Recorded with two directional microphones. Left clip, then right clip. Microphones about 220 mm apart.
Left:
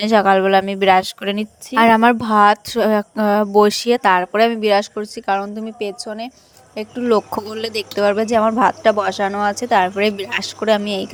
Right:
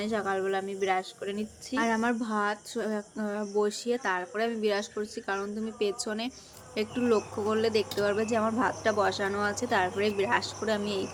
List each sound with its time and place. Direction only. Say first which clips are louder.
0.0 s speech: left 17 dB; 50° left (ahead or behind); by 7.1 s 25° left (ahead or behind)
7.6 s speech: left 11 dB; 40° left (ahead or behind)